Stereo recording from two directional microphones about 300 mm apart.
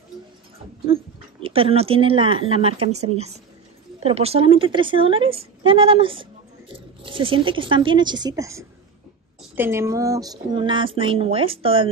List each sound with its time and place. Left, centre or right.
0.8 s speech: centre